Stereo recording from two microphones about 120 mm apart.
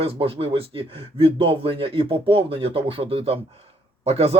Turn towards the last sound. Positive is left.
turn(degrees=-55)  # may be behind; listen again after turning